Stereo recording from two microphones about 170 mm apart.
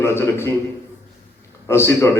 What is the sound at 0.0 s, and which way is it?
Speech, 15° left (ahead or behind).